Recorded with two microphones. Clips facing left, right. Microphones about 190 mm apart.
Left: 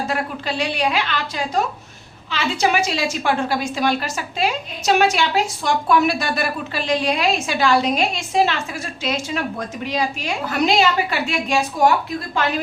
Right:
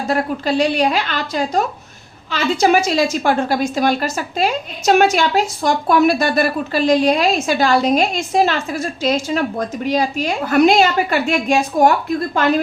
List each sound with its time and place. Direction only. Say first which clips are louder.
0.1 s a woman's voice: right 6 dB; 40° right (ahead or behind)